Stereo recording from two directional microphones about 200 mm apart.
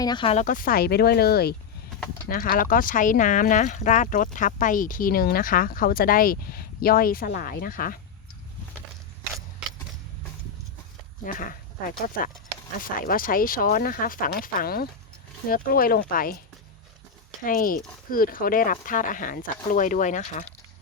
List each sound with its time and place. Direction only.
0.0 s speech: 20° left (ahead or behind)
0.4 s speech: 45° left (ahead or behind)
11.3 s speech: 45° left (ahead or behind)
17.4 s speech: 45° left (ahead or behind)